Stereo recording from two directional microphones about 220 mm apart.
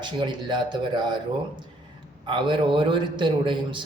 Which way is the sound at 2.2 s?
20° right (ahead or behind).